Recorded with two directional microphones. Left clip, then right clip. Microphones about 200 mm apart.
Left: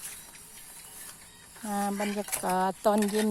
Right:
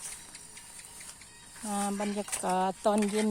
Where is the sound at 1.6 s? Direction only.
15° left (ahead or behind).